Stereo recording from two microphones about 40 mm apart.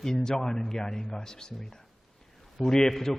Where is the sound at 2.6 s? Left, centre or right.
Centre.